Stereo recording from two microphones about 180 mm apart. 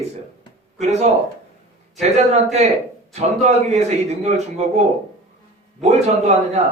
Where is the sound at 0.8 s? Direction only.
40° right (ahead or behind).